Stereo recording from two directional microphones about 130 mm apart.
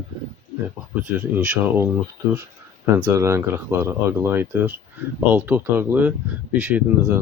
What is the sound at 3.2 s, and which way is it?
Speech, 20° right (ahead or behind).